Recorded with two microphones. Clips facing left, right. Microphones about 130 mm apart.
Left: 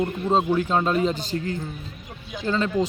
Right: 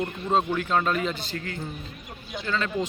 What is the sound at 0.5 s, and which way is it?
Speech, 30° left (ahead or behind).